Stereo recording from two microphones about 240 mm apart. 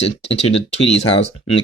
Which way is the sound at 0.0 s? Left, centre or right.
Left.